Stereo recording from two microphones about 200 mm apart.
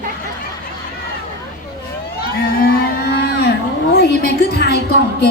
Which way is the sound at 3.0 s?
55° left (ahead or behind).